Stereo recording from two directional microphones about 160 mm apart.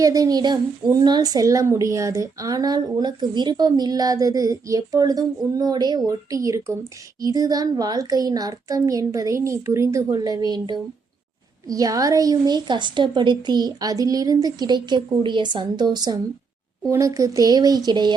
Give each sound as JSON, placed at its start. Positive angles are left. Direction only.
{"t": 0.0, "sound": "a woman's voice", "side_deg": -20}